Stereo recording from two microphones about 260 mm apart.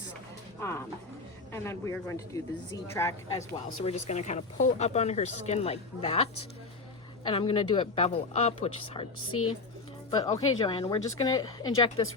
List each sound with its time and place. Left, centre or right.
0.6 s a woman's voice: centre
3.8 s speech: left
7.3 s speech: left
9.2 s a woman's voice: left
10.1 s a woman's voice: centre